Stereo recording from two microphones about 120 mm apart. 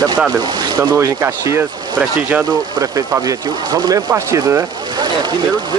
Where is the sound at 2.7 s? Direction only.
30° right (ahead or behind).